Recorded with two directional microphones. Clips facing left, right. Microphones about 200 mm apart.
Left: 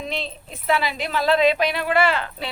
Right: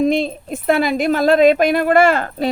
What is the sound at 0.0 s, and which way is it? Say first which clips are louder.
Speech: right 14 dB; 50° right (ahead or behind).